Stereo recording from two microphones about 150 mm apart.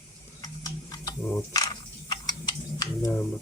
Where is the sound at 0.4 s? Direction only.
25° left (ahead or behind).